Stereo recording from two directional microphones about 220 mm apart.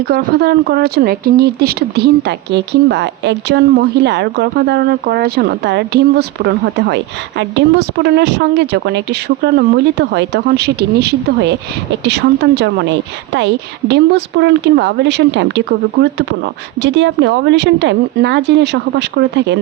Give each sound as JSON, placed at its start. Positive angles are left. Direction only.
{"t": 0.1, "sound": "speech", "side_deg": -45}